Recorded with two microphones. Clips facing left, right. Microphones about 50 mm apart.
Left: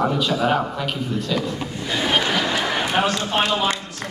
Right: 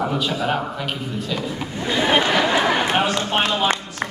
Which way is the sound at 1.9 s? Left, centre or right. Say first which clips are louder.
Right 3 dB; right.